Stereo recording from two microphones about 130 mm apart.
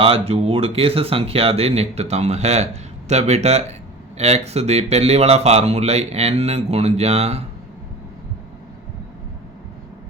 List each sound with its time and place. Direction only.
0.0 s speech: 50° right (ahead or behind)